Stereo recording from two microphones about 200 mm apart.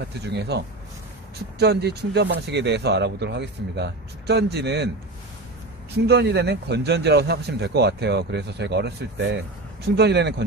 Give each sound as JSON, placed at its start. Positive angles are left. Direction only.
{"t": 0.2, "sound": "a man's voice", "side_deg": -55}
{"t": 5.9, "sound": "a man's voice", "side_deg": -55}